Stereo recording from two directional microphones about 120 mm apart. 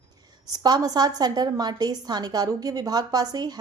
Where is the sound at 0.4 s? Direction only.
35° right (ahead or behind).